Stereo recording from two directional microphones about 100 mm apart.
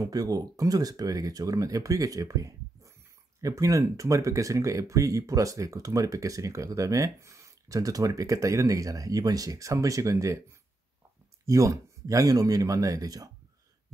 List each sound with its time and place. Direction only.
0.0 s speech: 40° right (ahead or behind)
11.4 s speech: 35° right (ahead or behind)